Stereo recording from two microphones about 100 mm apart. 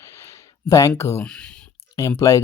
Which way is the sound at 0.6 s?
35° left (ahead or behind).